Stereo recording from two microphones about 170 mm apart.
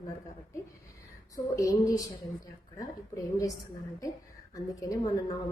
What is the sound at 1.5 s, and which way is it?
Speech, 20° left (ahead or behind).